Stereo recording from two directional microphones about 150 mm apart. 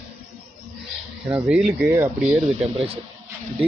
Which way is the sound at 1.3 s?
5° right (ahead or behind).